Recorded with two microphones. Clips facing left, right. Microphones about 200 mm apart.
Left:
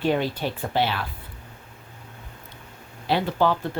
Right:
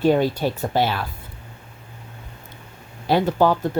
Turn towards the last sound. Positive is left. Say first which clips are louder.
# right 4 dB
turn(degrees=-45)  # may be behind; listen again after turning